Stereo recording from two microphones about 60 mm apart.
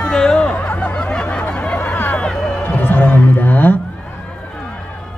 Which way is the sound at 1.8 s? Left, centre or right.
Left.